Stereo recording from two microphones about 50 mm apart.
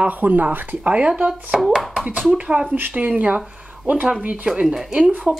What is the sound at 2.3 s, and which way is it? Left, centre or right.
Speech, right.